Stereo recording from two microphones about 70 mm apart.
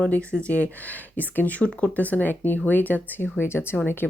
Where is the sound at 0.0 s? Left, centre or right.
Centre.